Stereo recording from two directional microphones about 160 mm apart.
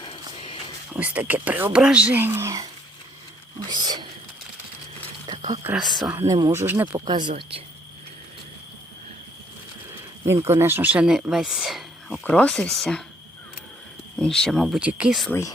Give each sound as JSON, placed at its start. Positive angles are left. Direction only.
{"t": 0.9, "sound": "speech", "side_deg": -10}
{"t": 3.6, "sound": "a sound", "side_deg": -25}
{"t": 5.3, "sound": "a sound", "side_deg": -25}
{"t": 5.6, "sound": "speech", "side_deg": 0}
{"t": 6.2, "sound": "speech", "side_deg": -25}
{"t": 10.2, "sound": "speech", "side_deg": -15}
{"t": 14.2, "sound": "speech", "side_deg": 5}
{"t": 15.3, "sound": "speech", "side_deg": 20}